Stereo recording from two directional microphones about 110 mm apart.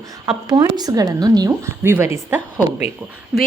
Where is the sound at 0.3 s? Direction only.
40° right (ahead or behind); by 2.4 s 20° right (ahead or behind).